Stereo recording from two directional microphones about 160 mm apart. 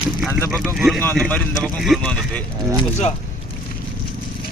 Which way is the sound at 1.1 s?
5° left (ahead or behind).